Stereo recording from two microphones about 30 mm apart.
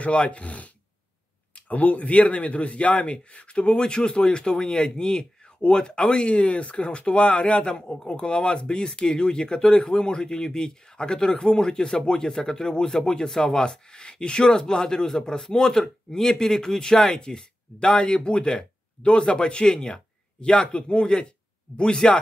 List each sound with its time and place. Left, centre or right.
0.2 s speech: left
1.7 s speech: left
8.0 s speech: left